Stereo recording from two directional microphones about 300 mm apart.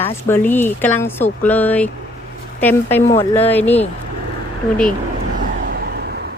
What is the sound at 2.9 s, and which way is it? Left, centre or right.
Speech, centre.